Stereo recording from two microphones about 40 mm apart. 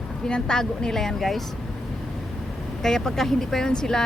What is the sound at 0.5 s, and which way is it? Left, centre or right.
Speech, centre.